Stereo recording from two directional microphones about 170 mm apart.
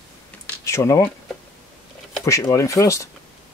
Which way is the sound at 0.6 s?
20° left (ahead or behind).